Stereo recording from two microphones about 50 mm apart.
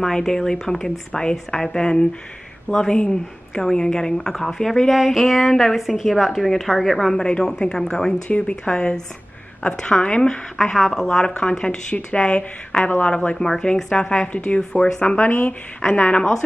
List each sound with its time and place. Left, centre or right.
0.0 s a woman's voice: centre
7.2 s a woman's voice: centre
8.3 s a woman's voice: left
10.6 s a woman's voice: centre
11.9 s a woman's voice: left
13.4 s a woman's voice: centre
15.2 s a woman's voice: left
16.2 s a woman's voice: centre